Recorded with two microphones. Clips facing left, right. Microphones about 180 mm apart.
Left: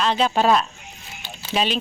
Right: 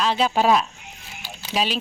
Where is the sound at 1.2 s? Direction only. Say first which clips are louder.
Left 1 dB; 10° right (ahead or behind).